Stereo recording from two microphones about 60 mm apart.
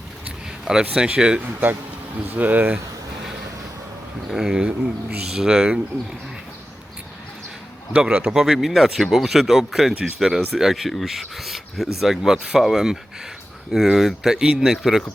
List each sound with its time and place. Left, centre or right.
0.6 s speech: centre
2.1 s speech: right
4.3 s speech: centre
7.9 s speech: centre
8.3 s speech: centre